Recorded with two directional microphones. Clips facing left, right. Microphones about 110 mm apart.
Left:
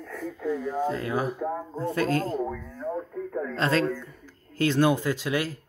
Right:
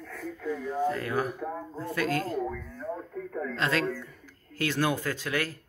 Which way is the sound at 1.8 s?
30° left (ahead or behind).